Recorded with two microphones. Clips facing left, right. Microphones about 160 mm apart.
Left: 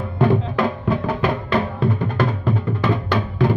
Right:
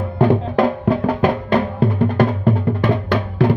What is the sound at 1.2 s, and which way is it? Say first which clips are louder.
Music: right 4 dB; 50° right (ahead or behind).